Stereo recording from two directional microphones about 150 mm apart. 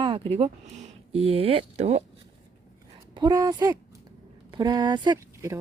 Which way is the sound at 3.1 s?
25° right (ahead or behind).